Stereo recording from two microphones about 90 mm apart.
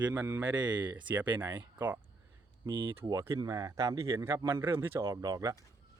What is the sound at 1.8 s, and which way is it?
Speech, 20° right (ahead or behind).